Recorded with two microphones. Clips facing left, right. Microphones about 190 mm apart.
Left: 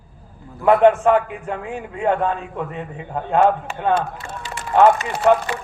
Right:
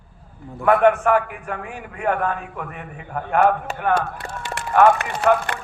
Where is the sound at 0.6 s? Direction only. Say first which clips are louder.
Left 2 dB; 25° left (ahead or behind).